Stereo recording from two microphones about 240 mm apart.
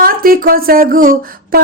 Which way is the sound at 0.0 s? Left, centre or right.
Right.